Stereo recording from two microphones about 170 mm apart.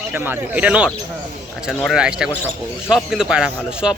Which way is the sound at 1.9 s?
5° right (ahead or behind).